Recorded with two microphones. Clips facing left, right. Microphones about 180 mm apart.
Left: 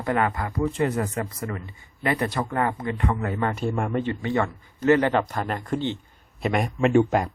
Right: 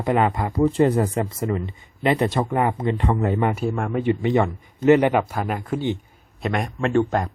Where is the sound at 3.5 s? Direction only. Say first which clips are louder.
Right 1 dB; centre (ahead or behind).